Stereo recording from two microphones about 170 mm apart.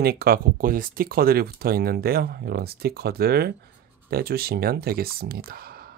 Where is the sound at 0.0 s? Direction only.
65° right (ahead or behind).